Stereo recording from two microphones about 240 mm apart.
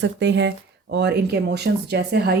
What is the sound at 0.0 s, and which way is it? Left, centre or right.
Speech, right.